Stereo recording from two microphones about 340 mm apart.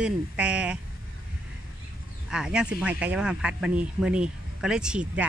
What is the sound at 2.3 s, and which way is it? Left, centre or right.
Speech, centre.